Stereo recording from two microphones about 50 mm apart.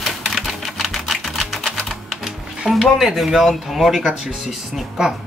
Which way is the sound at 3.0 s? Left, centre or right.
Centre.